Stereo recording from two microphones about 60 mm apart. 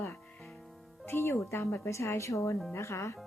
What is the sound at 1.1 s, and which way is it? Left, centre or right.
A woman's voice, left.